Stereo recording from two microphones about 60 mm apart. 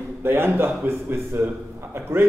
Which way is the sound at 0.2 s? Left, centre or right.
Right.